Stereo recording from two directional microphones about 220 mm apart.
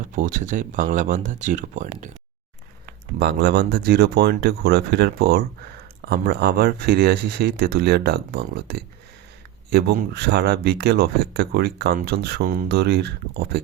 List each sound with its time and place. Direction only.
0.1 s speech: 35° right (ahead or behind)
3.2 s speech: 50° right (ahead or behind)